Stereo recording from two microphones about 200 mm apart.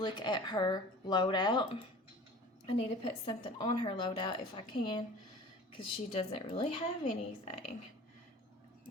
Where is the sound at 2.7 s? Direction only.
25° left (ahead or behind).